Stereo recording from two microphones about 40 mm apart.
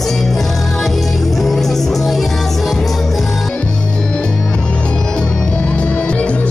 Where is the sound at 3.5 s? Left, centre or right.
Left.